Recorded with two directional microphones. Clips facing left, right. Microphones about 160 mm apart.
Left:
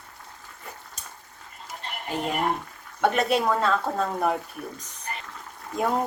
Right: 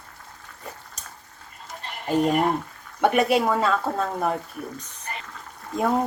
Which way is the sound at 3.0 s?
10° right (ahead or behind).